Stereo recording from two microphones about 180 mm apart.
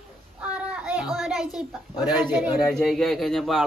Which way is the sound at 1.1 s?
Centre (ahead or behind).